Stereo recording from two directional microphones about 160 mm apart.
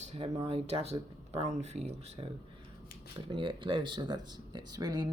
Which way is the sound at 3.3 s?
30° right (ahead or behind).